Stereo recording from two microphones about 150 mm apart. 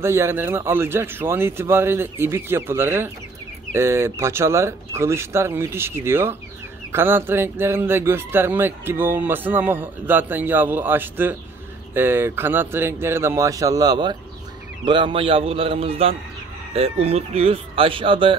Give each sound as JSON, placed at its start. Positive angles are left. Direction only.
{"t": 0.0, "sound": "a man's voice", "side_deg": -20}